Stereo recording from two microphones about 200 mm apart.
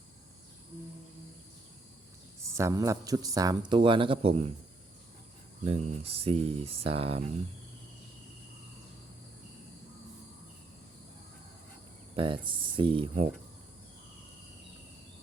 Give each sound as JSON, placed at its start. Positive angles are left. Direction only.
{"t": 2.4, "sound": "speech", "side_deg": -15}
{"t": 5.6, "sound": "speech", "side_deg": -30}
{"t": 12.1, "sound": "speech", "side_deg": -25}